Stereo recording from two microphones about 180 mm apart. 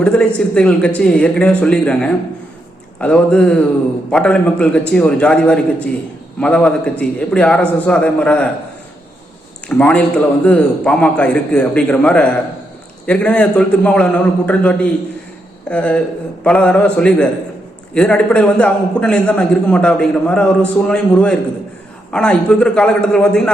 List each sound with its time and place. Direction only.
0.0 s a man's voice: 5° left (ahead or behind)
9.6 s a man's voice: 10° left (ahead or behind)